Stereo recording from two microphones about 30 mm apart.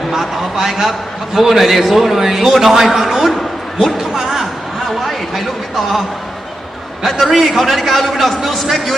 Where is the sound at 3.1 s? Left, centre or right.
Centre.